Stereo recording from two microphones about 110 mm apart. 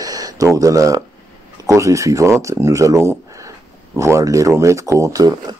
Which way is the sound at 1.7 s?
30° right (ahead or behind).